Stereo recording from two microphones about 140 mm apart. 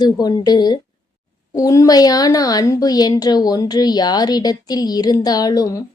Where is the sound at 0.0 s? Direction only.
30° left (ahead or behind).